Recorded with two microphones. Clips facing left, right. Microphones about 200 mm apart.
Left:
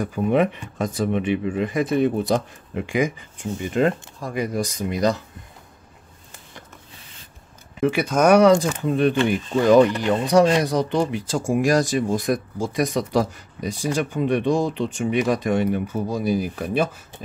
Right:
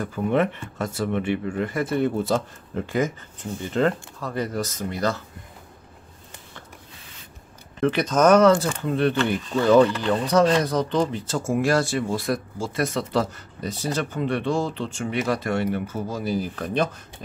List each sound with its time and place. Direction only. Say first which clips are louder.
0.0 s speech: left 3 dB; 15° left (ahead or behind)
7.8 s speech: left 1 dB; 10° left (ahead or behind)